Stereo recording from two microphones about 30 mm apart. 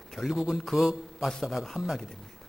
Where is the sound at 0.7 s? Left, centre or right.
Centre.